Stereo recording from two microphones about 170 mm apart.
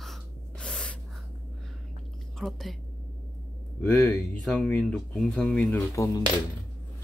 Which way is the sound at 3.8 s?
5° left (ahead or behind).